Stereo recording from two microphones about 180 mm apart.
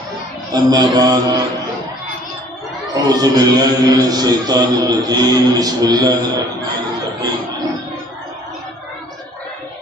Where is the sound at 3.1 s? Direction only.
20° right (ahead or behind).